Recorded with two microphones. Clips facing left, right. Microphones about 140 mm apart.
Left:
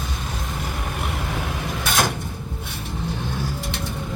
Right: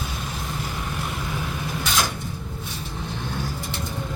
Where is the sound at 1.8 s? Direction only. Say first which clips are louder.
Left 3 dB; 55° left (ahead or behind).